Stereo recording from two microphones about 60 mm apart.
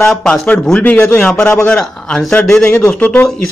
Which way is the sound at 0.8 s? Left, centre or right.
Left.